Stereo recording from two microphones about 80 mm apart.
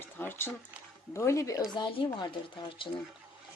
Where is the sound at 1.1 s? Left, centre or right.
Left.